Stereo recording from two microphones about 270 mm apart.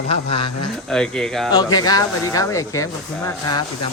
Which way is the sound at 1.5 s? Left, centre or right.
Centre.